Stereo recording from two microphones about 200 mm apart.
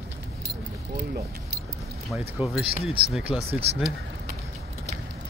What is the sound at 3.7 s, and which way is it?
Speech, 30° right (ahead or behind).